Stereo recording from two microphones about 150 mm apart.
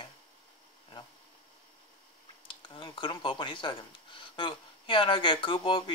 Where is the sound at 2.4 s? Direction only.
35° left (ahead or behind).